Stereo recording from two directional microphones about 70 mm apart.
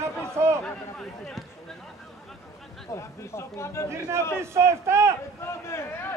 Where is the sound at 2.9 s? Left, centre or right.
Left.